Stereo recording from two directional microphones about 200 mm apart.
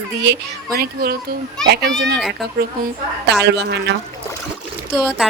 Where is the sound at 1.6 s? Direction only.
Centre (ahead or behind).